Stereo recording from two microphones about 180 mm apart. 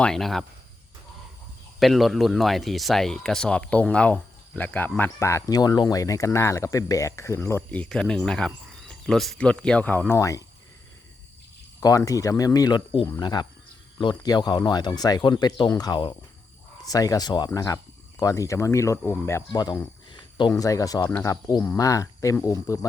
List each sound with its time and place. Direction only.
0.0 s speech: centre (ahead or behind)
1.8 s speech: centre (ahead or behind); by 10.4 s 15° left (ahead or behind)
11.8 s speech: 20° left (ahead or behind)